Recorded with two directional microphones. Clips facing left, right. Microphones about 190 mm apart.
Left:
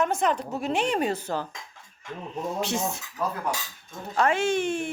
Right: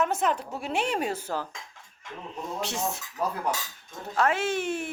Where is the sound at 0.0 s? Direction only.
5° right (ahead or behind).